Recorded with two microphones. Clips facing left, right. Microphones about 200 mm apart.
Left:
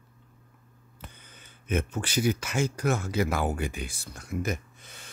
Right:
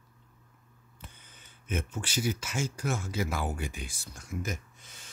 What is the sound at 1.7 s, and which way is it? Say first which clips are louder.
Speech: left 6 dB; 60° left (ahead or behind).